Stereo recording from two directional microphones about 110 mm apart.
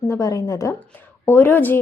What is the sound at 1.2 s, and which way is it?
Speech, 20° left (ahead or behind).